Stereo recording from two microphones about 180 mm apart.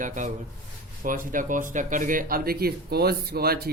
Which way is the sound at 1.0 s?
50° right (ahead or behind).